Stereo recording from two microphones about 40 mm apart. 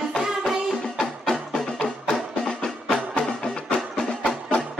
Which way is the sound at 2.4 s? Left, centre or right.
Centre.